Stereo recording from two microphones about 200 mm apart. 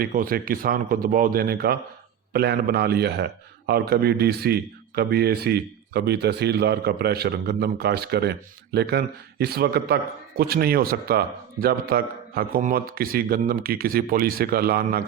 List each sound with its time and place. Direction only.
0.0 s a man's voice: 45° right (ahead or behind)